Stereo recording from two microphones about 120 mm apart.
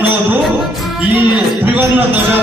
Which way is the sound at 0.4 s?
Centre (ahead or behind).